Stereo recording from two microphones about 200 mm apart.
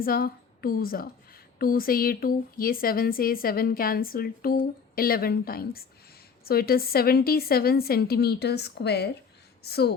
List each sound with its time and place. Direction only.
0.0 s speech: 45° left (ahead or behind)